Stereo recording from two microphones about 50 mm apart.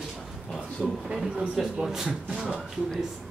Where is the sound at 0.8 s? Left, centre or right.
Centre.